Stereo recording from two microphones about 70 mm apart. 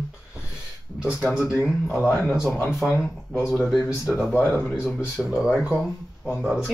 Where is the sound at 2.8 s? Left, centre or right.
Centre.